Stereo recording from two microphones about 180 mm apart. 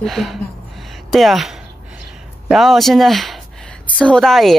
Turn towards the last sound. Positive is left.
turn(degrees=0)  # may be behind; listen again after turning